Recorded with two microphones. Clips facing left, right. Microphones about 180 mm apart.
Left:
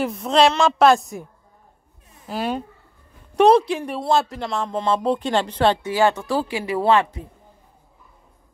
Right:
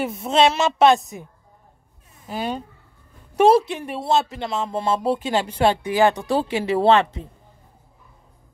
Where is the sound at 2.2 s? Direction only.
Centre (ahead or behind); by 7.3 s 25° right (ahead or behind).